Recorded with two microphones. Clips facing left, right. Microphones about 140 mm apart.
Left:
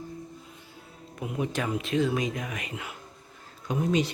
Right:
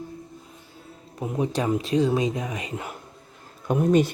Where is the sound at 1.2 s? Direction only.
35° right (ahead or behind).